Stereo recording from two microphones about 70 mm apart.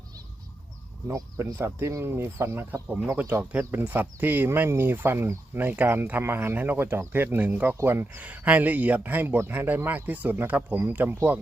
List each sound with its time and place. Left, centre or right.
1.0 s speech: right
1.5 s speech: right
3.7 s speech: right